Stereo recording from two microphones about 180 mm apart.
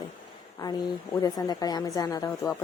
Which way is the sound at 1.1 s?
20° left (ahead or behind).